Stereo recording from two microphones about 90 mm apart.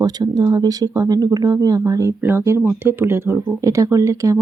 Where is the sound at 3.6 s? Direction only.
35° right (ahead or behind).